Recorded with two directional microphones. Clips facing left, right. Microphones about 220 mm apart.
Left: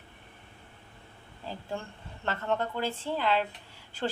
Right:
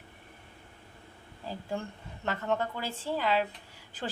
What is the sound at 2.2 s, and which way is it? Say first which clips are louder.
A woman's voice: even; 10° right (ahead or behind).